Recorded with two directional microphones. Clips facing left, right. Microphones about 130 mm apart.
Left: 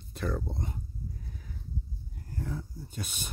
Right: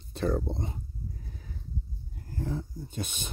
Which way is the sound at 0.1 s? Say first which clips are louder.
Right 5 dB; 30° right (ahead or behind).